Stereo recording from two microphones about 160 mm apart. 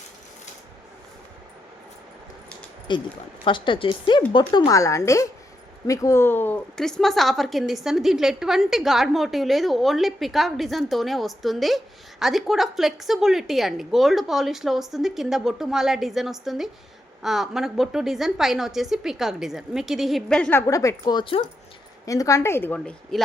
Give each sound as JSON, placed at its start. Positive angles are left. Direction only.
{"t": 2.9, "sound": "a woman's voice", "side_deg": 30}
{"t": 20.6, "sound": "a woman's voice", "side_deg": 20}